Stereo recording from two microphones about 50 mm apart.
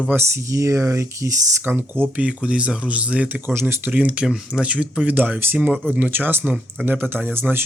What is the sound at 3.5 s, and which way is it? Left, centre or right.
Speech, right.